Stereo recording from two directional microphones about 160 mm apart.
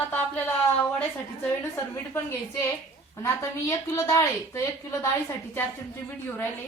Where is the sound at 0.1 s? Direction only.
10° left (ahead or behind).